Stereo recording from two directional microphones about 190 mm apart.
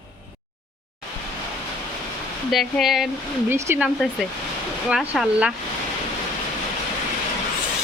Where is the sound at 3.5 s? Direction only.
10° right (ahead or behind).